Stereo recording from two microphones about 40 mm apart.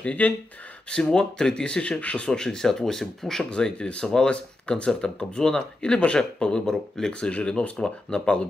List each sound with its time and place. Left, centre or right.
0.2 s speech: left
1.0 s speech: centre; by 2.3 s left
2.3 s speech: centre
3.7 s speech: left
7.1 s speech: left